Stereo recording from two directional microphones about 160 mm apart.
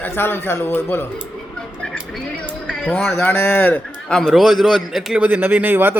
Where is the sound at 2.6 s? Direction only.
5° left (ahead or behind); by 5.9 s 10° right (ahead or behind).